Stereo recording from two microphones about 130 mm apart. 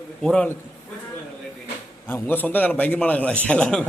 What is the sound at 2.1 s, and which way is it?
A man's voice, 15° left (ahead or behind).